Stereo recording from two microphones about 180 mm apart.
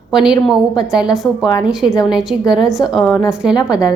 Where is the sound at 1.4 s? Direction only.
25° left (ahead or behind).